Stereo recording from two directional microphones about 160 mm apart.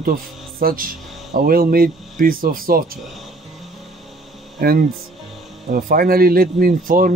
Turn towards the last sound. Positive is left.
turn(degrees=-60)  # may be behind; listen again after turning